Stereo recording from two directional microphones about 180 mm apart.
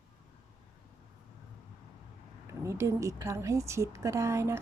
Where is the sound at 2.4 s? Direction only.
15° right (ahead or behind).